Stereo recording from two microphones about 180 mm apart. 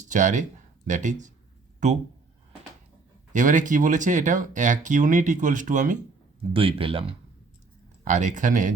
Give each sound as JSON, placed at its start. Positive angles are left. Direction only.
{"t": 0.1, "sound": "speech", "side_deg": -45}
{"t": 3.3, "sound": "speech", "side_deg": -45}
{"t": 6.5, "sound": "speech", "side_deg": -30}
{"t": 8.0, "sound": "speech", "side_deg": -45}